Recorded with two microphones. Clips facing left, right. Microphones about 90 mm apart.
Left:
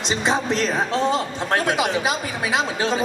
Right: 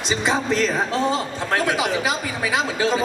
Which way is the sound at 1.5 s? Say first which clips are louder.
Left 1 dB; 20° left (ahead or behind).